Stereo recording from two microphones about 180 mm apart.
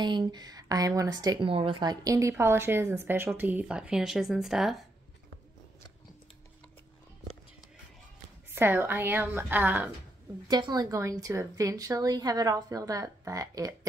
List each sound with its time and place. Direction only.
0.0 s a woman's voice: 25° right (ahead or behind); by 4.8 s centre (ahead or behind)
8.5 s a woman's voice: 10° right (ahead or behind)
10.5 s a woman's voice: 20° right (ahead or behind)